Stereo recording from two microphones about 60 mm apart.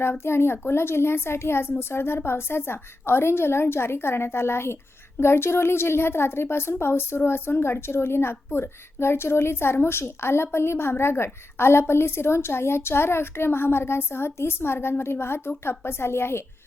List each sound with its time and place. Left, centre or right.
0.0 s a woman's voice: left